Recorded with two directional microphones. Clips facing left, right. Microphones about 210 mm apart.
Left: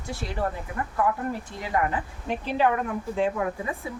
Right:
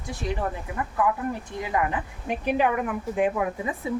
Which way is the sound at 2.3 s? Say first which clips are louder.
Right 1 dB; 15° right (ahead or behind).